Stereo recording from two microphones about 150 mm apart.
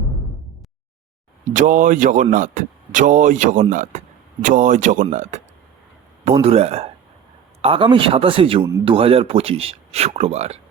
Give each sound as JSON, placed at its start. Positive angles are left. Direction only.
{"t": 1.5, "sound": "speech", "side_deg": -60}
{"t": 6.4, "sound": "speech", "side_deg": -45}